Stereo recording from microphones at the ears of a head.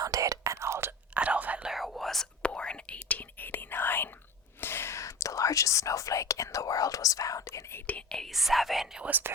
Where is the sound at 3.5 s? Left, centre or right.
Left.